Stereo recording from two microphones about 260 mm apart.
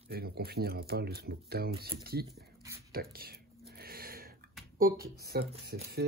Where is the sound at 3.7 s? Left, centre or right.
Right.